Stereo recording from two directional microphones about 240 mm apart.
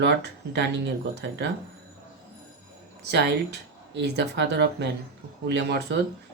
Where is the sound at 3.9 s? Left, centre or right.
Right.